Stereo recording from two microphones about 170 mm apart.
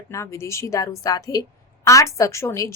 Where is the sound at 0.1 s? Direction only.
15° left (ahead or behind).